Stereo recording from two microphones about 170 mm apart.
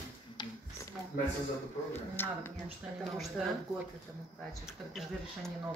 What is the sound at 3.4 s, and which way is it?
Speech, 5° right (ahead or behind).